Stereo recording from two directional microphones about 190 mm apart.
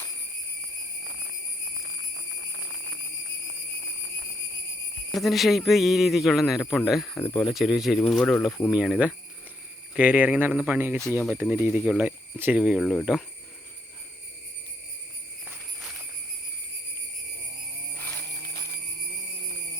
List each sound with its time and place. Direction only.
5.1 s a man's voice: centre (ahead or behind)
11.0 s speech: 15° left (ahead or behind)
11.3 s a man's voice: 10° right (ahead or behind)
17.9 s jingle bell: 10° left (ahead or behind)